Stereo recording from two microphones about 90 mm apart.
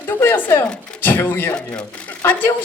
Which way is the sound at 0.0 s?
25° left (ahead or behind).